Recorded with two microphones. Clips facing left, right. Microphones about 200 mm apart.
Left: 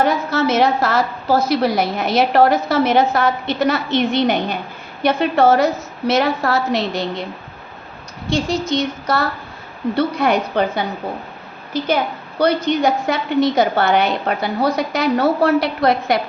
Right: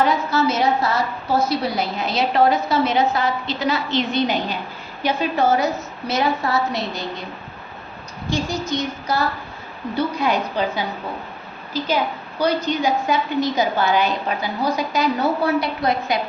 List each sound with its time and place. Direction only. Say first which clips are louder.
0.0 s a sound: left 1 dB; 50° left (ahead or behind)
0.4 s a woman's voice: left 5 dB; 90° left
1.5 s a woman's voice: left 5 dB; 80° left
3.1 s a woman's voice: left 4 dB; 55° left (ahead or behind)
5.0 s a woman's voice: left 5 dB; 70° left (ahead or behind)
8.3 s a woman's voice: left 4 dB; 85° left; by 10.8 s 60° left (ahead or behind)
12.4 s a woman's voice: left 4 dB; 70° left (ahead or behind)